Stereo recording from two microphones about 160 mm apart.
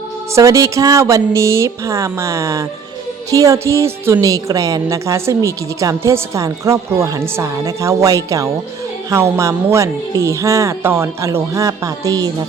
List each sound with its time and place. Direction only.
0.3 s a woman's voice: 20° right (ahead or behind)